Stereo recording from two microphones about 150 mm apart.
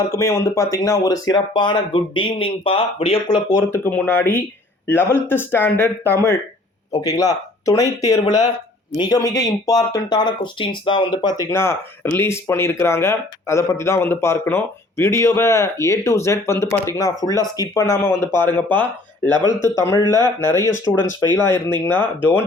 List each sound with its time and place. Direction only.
0.1 s speech: 20° left (ahead or behind)
3.7 s speech: 10° left (ahead or behind); by 11.3 s 30° left (ahead or behind)
11.4 s speech: 15° left (ahead or behind)